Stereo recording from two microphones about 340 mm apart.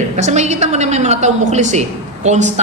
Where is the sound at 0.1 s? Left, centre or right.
Centre.